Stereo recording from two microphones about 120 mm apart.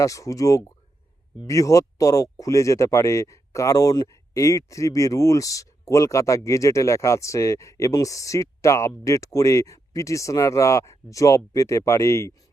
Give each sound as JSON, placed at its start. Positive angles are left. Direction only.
{"t": 0.0, "sound": "speech", "side_deg": 30}